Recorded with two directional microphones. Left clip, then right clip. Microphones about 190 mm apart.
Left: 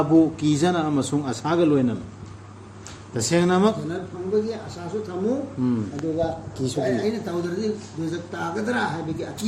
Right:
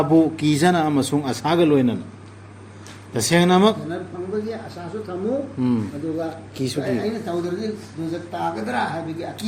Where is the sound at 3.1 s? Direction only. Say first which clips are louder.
Right 4 dB; 35° right (ahead or behind).